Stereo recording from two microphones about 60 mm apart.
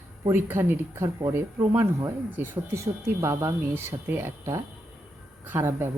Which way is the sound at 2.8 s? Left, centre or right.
Right.